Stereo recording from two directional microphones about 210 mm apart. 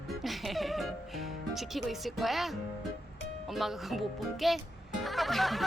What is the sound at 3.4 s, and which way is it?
A child's voice, centre (ahead or behind).